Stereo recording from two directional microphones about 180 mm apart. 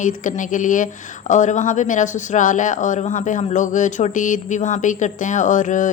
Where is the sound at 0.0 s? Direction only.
45° left (ahead or behind).